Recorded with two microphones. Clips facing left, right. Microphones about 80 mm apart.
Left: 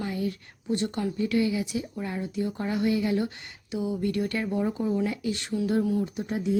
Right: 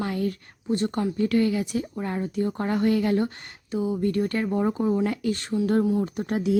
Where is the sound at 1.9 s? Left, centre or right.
Right.